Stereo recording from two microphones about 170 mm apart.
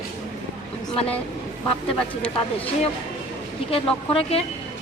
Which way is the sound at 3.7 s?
35° left (ahead or behind).